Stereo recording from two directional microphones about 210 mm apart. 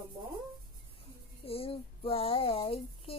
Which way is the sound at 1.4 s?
25° left (ahead or behind).